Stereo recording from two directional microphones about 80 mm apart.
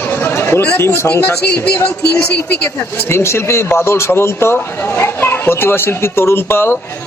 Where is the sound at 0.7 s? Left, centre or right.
Left.